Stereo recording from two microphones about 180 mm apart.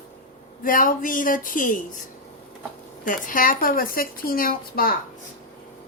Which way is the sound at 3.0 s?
45° left (ahead or behind).